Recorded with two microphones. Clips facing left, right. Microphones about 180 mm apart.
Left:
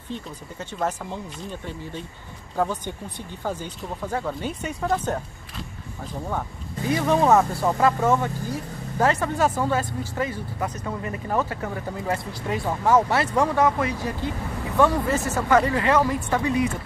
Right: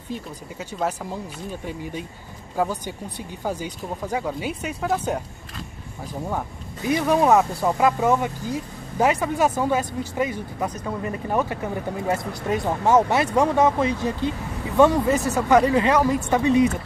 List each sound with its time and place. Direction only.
0.1 s speech: 10° right (ahead or behind)
6.9 s speech: 15° right (ahead or behind)
12.1 s speech: 20° right (ahead or behind)